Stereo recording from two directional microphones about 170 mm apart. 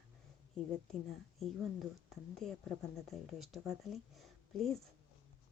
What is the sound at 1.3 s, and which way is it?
Speech, centre (ahead or behind).